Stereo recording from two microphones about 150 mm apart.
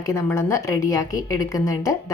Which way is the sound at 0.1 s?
15° left (ahead or behind).